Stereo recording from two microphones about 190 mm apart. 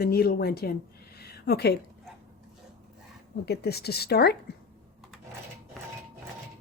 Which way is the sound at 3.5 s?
55° left (ahead or behind).